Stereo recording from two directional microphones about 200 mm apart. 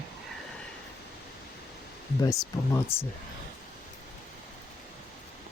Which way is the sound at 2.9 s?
10° left (ahead or behind).